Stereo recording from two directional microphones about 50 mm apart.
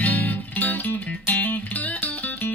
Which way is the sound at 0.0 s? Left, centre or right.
Left.